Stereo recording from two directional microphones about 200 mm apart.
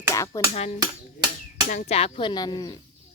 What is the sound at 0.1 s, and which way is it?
Dishes, 15° left (ahead or behind).